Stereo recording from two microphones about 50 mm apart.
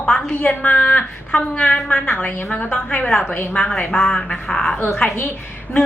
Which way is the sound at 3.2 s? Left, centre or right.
Left.